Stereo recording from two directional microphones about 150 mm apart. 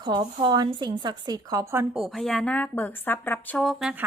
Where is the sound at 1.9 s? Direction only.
Centre (ahead or behind).